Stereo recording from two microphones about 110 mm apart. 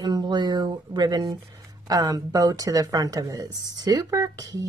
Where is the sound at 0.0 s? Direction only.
40° right (ahead or behind).